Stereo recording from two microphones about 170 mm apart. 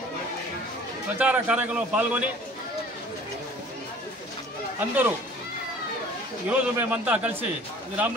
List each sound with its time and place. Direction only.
1.1 s a man's voice: 10° right (ahead or behind)
4.7 s a man's voice: 10° right (ahead or behind)
6.5 s a man's voice: 10° right (ahead or behind)